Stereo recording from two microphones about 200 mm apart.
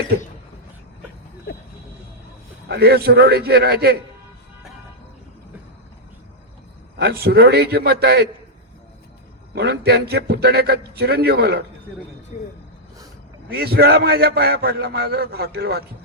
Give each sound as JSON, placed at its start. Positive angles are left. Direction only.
{"t": 2.6, "sound": "a man's voice", "side_deg": -55}
{"t": 7.0, "sound": "a man's voice", "side_deg": -55}
{"t": 9.6, "sound": "a man's voice", "side_deg": -55}
{"t": 12.3, "sound": "speech", "side_deg": 35}
{"t": 13.5, "sound": "a man's voice", "side_deg": -50}